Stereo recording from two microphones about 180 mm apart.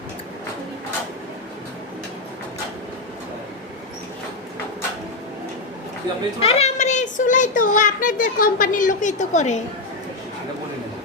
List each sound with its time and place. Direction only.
6.4 s a child's voice: 35° left (ahead or behind)